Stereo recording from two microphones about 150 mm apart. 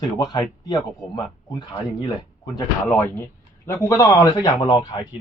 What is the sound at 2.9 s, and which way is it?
Speech, 15° left (ahead or behind).